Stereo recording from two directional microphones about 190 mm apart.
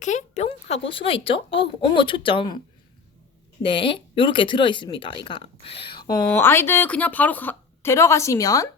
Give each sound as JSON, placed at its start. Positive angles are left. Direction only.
{"t": 0.0, "sound": "speech", "side_deg": 40}
{"t": 3.6, "sound": "speech", "side_deg": 25}